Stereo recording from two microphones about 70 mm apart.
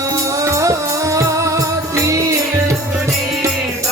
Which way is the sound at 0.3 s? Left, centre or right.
Right.